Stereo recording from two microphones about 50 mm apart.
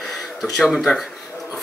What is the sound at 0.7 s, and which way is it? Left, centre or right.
Speech, centre.